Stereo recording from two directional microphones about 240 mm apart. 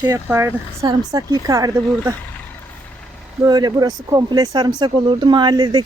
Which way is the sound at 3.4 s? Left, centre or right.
Centre.